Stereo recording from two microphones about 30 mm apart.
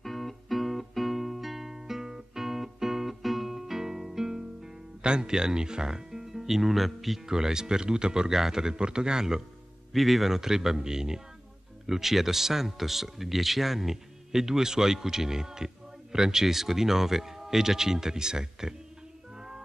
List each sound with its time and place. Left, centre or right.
0.0 s music: centre
5.0 s speech: right; by 7.2 s centre
7.2 s a man's voice: centre
8.3 s a man's voice: centre
9.9 s speech: centre
11.8 s speech: centre